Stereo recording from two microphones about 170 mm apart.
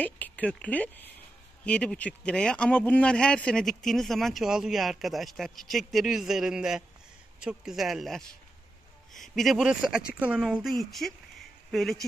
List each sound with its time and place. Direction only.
0.0 s speech: 10° left (ahead or behind)